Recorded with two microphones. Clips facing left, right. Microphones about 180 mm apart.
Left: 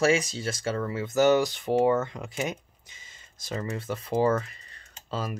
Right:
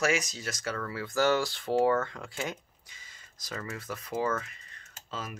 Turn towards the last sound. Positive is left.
turn(degrees=35)  # may be behind; listen again after turning